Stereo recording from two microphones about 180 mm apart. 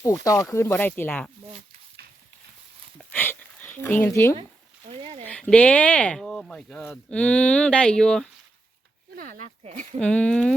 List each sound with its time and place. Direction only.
0.0 s speech: 20° left (ahead or behind)
3.0 s a sound: 10° left (ahead or behind)
4.9 s a sound: 35° right (ahead or behind)
5.2 s speech: 5° left (ahead or behind)
9.1 s speech: 50° right (ahead or behind)
10.0 s speech: 5° left (ahead or behind)